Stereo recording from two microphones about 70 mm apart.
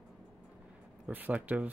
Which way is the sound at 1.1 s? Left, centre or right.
Right.